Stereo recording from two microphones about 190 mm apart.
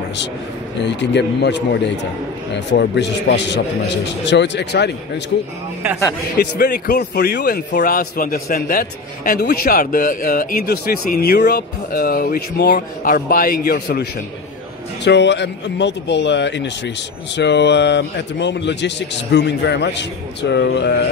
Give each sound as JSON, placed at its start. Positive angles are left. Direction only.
{"t": 0.8, "sound": "a man's voice", "side_deg": 65}
{"t": 6.4, "sound": "a man's voice", "side_deg": 55}
{"t": 13.1, "sound": "a man's voice", "side_deg": 45}
{"t": 15.0, "sound": "a man's voice", "side_deg": 65}